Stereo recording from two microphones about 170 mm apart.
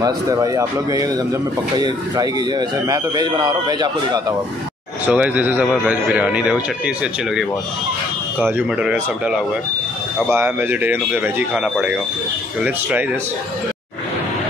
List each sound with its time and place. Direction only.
0.0 s a man's voice: 20° right (ahead or behind)
2.9 s a man's voice: 20° right (ahead or behind)
5.0 s speech: 10° right (ahead or behind)
8.4 s speech: 10° right (ahead or behind)
10.3 s speech: 10° right (ahead or behind)